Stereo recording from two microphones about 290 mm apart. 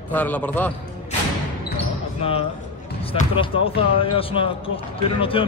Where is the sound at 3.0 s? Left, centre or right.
Centre.